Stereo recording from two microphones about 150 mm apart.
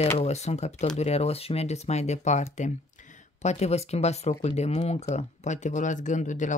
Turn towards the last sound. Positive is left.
turn(degrees=55)  # may be behind; listen again after turning